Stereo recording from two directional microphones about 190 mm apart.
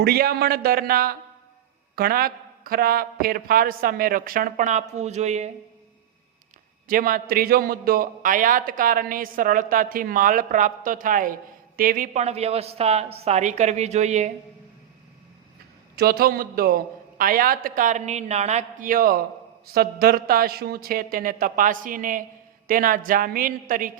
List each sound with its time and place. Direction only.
0.0 s a man's voice: 55° right (ahead or behind); by 5.5 s 35° right (ahead or behind)
6.8 s a man's voice: 45° right (ahead or behind)
16.0 s a man's voice: 55° right (ahead or behind)